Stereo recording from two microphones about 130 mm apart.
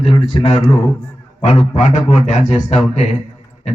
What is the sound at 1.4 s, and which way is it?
A man's voice, 55° left (ahead or behind).